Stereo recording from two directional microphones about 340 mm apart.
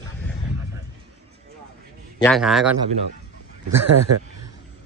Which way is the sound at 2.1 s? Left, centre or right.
Centre.